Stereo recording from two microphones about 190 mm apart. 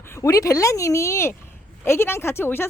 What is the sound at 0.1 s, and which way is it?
Speech, 15° left (ahead or behind).